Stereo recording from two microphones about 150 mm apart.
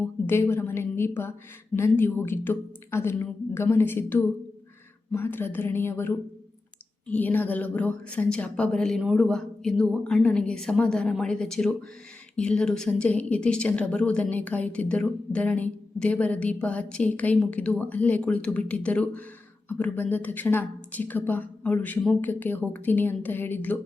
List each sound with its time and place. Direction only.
0.0 s a woman's voice: 15° left (ahead or behind)